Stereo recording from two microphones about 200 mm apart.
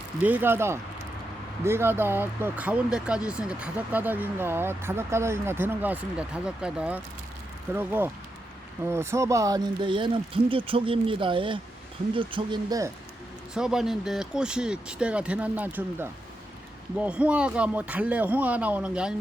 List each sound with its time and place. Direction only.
0.2 s speech: 10° right (ahead or behind)
13.5 s speech: 5° right (ahead or behind)